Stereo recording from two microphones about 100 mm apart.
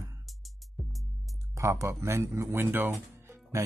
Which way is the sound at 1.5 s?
30° right (ahead or behind).